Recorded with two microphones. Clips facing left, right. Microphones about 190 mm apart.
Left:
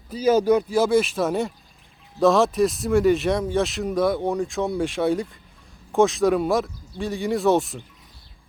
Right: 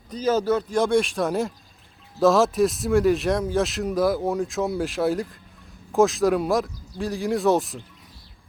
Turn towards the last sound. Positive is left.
turn(degrees=0)  # may be behind; listen again after turning